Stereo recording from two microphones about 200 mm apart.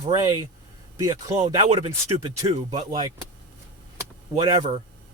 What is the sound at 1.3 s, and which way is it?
Speech, 35° right (ahead or behind).